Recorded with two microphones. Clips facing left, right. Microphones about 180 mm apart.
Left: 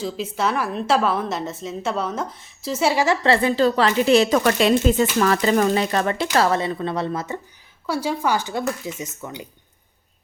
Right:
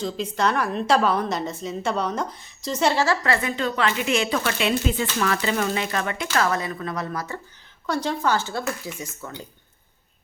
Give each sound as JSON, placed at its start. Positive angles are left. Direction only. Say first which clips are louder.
{"t": 0.0, "sound": "a woman's voice", "louder": "even", "side_deg": 5}
{"t": 3.2, "sound": "speech", "louder": "left 7 dB", "side_deg": 30}
{"t": 7.9, "sound": "speech", "louder": "left 1 dB", "side_deg": 10}